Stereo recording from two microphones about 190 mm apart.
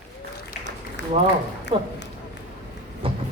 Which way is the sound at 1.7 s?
25° right (ahead or behind).